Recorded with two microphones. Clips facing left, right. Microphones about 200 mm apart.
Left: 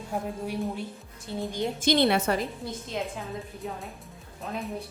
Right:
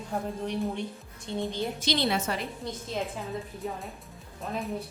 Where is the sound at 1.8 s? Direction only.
55° left (ahead or behind).